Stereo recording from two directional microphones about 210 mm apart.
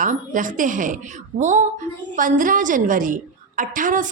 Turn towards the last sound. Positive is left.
turn(degrees=-40)  # may be behind; listen again after turning